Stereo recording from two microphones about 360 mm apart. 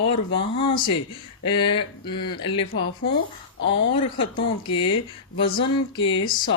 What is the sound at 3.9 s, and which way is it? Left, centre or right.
Speech, centre.